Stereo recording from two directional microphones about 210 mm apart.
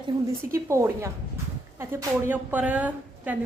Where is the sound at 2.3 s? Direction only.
10° right (ahead or behind).